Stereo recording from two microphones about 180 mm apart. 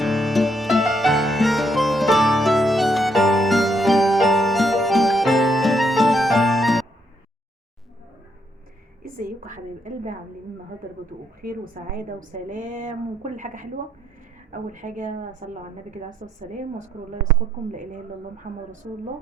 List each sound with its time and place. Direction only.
0.0 s music: centre (ahead or behind)
9.0 s a sound: 50° right (ahead or behind)
11.4 s a woman's voice: 55° right (ahead or behind)
18.5 s a woman's voice: 65° right (ahead or behind)